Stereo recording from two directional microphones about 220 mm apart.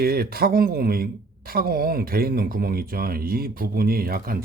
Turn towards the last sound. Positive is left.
turn(degrees=-40)  # may be behind; listen again after turning